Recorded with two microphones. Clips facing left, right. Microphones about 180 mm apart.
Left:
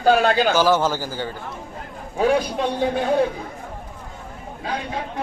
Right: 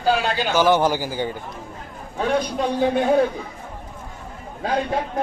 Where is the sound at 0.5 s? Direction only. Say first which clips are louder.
Right 1 dB; 15° right (ahead or behind).